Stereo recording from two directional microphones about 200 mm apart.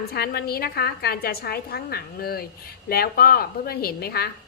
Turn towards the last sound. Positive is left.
turn(degrees=50)  # may be behind; listen again after turning